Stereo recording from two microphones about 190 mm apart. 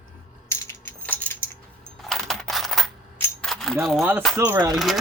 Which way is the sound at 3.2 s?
5° left (ahead or behind).